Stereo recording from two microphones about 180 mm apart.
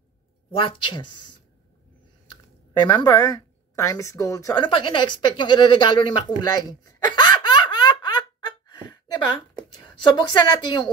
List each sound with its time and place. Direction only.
0.6 s speech: 25° left (ahead or behind)
2.8 s speech: 25° left (ahead or behind)
7.2 s laughter: 25° left (ahead or behind)
9.8 s speech: 25° left (ahead or behind)